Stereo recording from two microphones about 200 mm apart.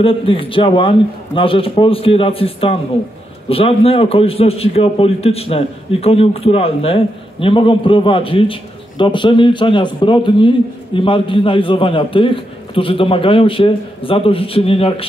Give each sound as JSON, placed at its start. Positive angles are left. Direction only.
{"t": 0.0, "sound": "a man's voice", "side_deg": 25}